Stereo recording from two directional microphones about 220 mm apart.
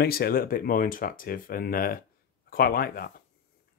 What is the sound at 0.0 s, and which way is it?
Speech, 45° left (ahead or behind).